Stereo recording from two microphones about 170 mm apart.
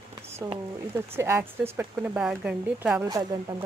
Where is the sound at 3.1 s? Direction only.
25° right (ahead or behind).